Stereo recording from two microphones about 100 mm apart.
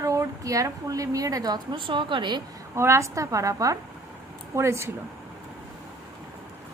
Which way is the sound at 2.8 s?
30° right (ahead or behind).